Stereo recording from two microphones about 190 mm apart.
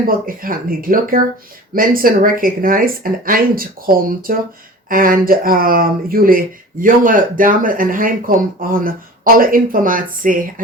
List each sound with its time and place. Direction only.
0.3 s speech: 50° right (ahead or behind)